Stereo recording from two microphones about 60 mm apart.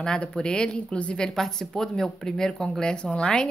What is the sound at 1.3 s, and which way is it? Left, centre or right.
Speech, centre.